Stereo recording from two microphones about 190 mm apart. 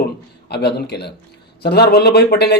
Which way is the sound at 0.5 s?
60° left (ahead or behind).